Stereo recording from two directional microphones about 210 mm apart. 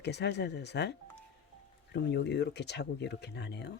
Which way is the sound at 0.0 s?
55° left (ahead or behind).